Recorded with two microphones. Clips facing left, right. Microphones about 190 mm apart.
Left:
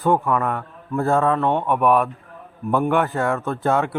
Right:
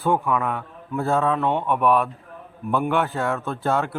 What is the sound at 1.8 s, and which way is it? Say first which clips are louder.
A man's voice: left 2 dB; 5° left (ahead or behind).